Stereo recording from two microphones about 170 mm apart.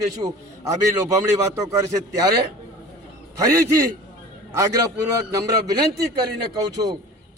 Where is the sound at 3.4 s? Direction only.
20° right (ahead or behind).